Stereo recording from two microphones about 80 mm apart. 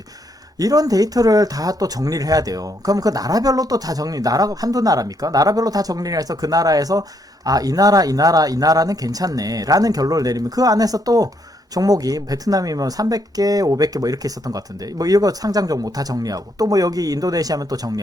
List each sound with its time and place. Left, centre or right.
0.6 s speech: right